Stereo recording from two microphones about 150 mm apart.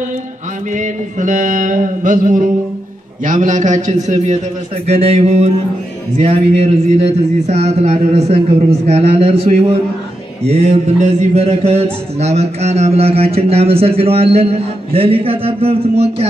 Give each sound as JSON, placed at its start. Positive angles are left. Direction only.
{"t": 0.7, "sound": "mantra", "side_deg": -60}
{"t": 4.8, "sound": "a man's voice", "side_deg": -45}